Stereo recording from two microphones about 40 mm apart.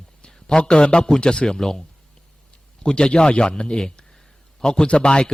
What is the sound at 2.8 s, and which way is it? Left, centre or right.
Speech, left.